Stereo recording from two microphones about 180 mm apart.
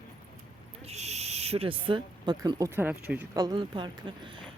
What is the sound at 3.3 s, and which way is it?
Speech, 20° right (ahead or behind).